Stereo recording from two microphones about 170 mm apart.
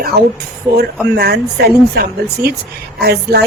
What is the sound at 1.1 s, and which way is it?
A woman's voice, 70° right (ahead or behind).